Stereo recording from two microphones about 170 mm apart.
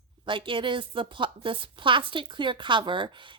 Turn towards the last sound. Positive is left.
turn(degrees=-30)  # may be behind; listen again after turning